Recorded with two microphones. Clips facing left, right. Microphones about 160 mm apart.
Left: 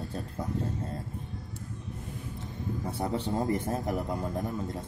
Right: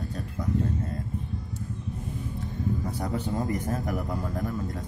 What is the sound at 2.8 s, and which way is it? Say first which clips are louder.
Speech: right 1 dB; 30° left (ahead or behind).